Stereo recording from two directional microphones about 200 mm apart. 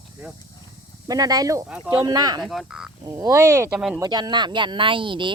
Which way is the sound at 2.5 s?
Centre (ahead or behind).